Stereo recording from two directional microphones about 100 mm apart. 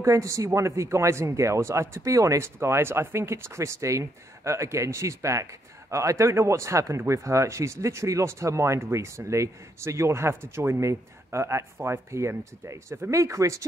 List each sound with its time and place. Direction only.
0.0 s speech: 30° right (ahead or behind)